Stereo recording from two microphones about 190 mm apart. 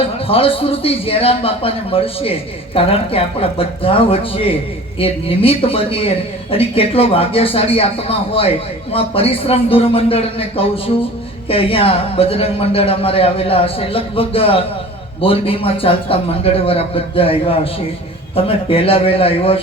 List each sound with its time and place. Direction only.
0.0 s speech: 30° left (ahead or behind)